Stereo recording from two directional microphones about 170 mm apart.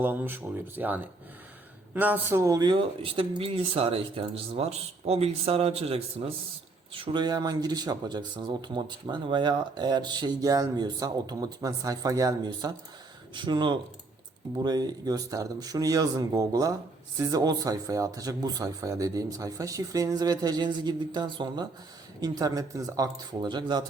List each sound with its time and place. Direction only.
0.0 s speech: 10° right (ahead or behind)